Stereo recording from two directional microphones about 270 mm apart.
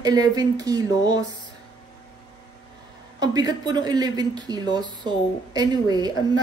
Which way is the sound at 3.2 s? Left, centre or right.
Centre.